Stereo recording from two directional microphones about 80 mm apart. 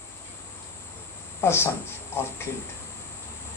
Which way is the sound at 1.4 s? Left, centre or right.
Left.